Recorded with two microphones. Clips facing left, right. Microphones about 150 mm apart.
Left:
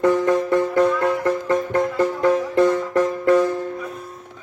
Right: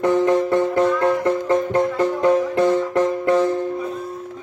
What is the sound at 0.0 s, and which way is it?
Music, 25° right (ahead or behind).